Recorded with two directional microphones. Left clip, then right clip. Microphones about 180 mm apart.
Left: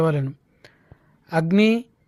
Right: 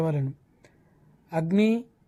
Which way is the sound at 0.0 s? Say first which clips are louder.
Left 7 dB; 20° left (ahead or behind).